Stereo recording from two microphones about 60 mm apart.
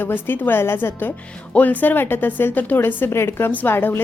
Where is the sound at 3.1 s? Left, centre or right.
Left.